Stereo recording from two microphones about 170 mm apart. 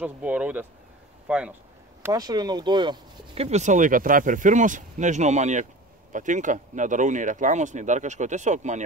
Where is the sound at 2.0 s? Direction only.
20° right (ahead or behind).